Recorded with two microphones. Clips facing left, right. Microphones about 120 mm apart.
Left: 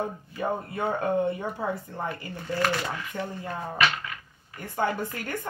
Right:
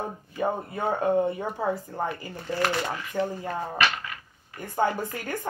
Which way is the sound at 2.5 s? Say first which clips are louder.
Right 1 dB; 15° right (ahead or behind).